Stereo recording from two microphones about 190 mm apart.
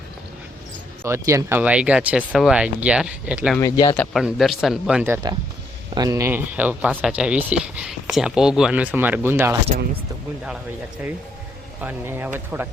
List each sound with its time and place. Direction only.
1.0 s speech: 15° right (ahead or behind)
3.6 s speech: 15° left (ahead or behind)
3.9 s speech: 5° left (ahead or behind); by 9.6 s 15° right (ahead or behind)
11.8 s speech: 10° right (ahead or behind)